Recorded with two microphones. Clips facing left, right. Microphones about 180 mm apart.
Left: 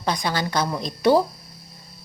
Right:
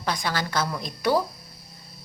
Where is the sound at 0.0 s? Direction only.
20° left (ahead or behind).